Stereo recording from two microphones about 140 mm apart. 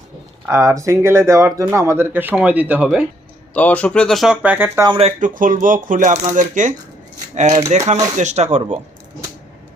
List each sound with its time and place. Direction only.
0.4 s speech: 20° right (ahead or behind)
3.5 s speech: 10° left (ahead or behind); by 4.9 s 15° right (ahead or behind)
4.9 s speech: 45° right (ahead or behind)
5.2 s speech: 70° right (ahead or behind); by 8.8 s 55° right (ahead or behind)